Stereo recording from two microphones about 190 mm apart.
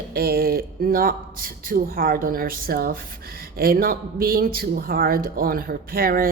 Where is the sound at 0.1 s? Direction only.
55° right (ahead or behind).